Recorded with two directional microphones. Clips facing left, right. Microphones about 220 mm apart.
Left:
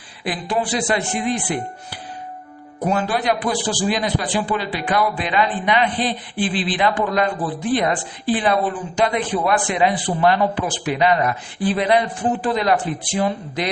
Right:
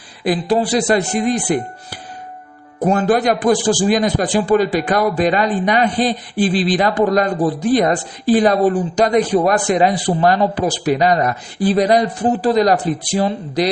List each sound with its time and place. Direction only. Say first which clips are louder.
0.3 s a man's voice: right 7 dB; 40° right (ahead or behind)